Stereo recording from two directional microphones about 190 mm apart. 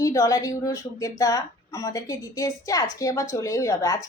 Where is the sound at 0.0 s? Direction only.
15° left (ahead or behind).